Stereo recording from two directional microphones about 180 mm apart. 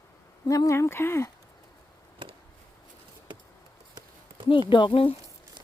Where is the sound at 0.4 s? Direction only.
20° left (ahead or behind).